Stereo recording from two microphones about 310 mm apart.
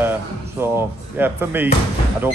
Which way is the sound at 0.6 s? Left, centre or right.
Centre.